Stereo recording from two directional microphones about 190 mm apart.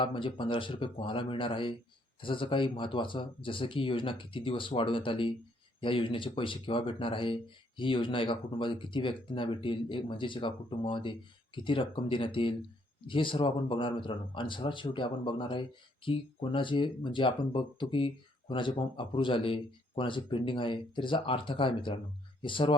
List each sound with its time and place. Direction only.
0.0 s speech: 25° left (ahead or behind)